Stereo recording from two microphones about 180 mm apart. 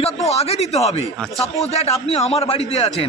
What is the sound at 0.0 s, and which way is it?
A man's voice, 35° left (ahead or behind).